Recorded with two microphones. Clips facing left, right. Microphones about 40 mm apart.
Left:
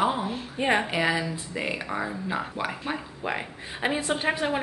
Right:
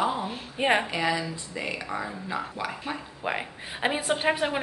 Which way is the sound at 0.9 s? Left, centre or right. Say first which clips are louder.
Left 2 dB; centre.